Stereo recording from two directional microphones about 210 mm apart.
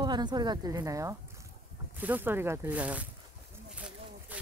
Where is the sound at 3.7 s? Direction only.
5° right (ahead or behind).